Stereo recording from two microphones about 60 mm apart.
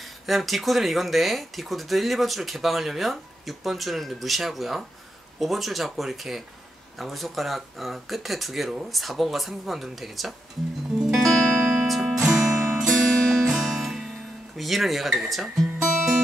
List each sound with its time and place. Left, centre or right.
0.0 s speech: centre
11.0 s music: centre
12.0 s music: centre
14.6 s speech: centre